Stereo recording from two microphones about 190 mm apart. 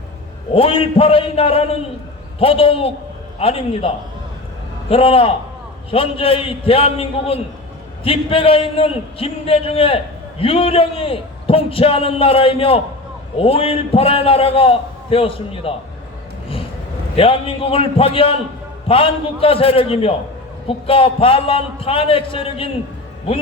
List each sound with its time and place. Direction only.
0.5 s a man's voice: 30° left (ahead or behind)
17.2 s a man's voice: 30° left (ahead or behind)